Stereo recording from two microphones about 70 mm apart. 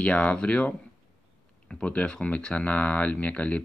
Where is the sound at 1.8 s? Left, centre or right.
Centre.